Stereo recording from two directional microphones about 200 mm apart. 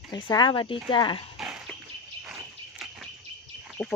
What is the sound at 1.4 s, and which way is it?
Dog, centre (ahead or behind).